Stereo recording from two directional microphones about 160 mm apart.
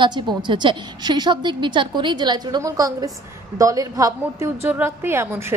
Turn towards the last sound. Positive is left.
turn(degrees=-15)  # may be behind; listen again after turning